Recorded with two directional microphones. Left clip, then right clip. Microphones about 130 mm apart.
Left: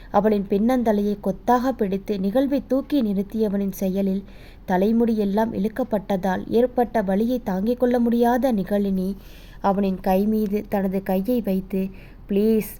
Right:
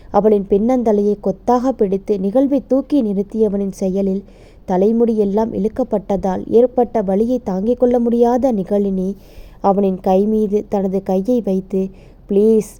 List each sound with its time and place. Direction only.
0.1 s a woman's voice: 40° right (ahead or behind)